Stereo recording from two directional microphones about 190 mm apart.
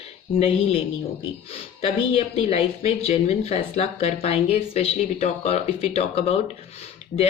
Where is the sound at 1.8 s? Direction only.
30° left (ahead or behind).